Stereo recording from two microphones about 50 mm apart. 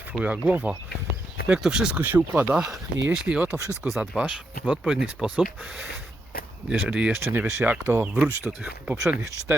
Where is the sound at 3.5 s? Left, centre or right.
Left.